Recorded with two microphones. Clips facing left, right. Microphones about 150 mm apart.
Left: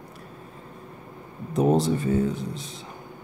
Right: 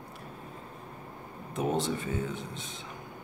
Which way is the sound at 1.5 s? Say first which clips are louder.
Left 9 dB; 35° left (ahead or behind).